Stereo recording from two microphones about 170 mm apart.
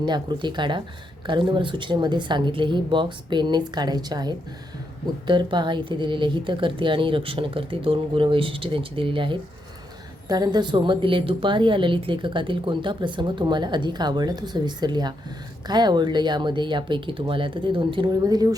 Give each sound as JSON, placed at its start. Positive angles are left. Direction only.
{"t": 0.0, "sound": "a woman's voice", "side_deg": -25}